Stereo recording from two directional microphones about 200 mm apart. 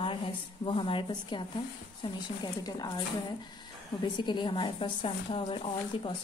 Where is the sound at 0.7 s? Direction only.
25° left (ahead or behind).